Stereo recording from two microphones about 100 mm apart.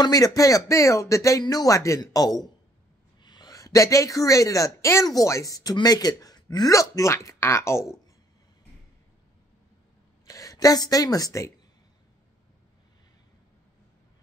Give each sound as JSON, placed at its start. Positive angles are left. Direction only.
{"t": 0.0, "sound": "speech", "side_deg": 35}
{"t": 10.2, "sound": "speech", "side_deg": 35}